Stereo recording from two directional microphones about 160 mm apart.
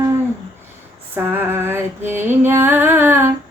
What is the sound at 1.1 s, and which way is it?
Female singing, 15° right (ahead or behind).